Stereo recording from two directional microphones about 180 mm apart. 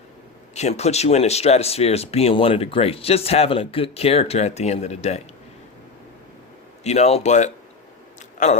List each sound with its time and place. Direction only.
0.5 s speech: 35° left (ahead or behind)
6.8 s speech: 35° left (ahead or behind)